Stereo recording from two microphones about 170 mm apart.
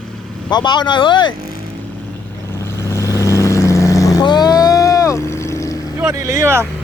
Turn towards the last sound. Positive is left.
turn(degrees=-15)  # may be behind; listen again after turning